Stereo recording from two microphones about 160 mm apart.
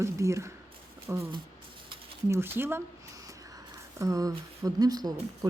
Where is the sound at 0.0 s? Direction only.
20° right (ahead or behind).